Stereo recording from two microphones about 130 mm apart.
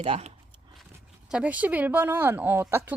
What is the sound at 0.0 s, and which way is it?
Speech, 55° right (ahead or behind).